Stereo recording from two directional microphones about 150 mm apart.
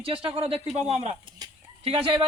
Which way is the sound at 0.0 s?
40° right (ahead or behind).